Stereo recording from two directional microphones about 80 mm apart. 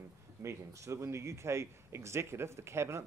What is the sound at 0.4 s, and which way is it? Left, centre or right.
Speech, right.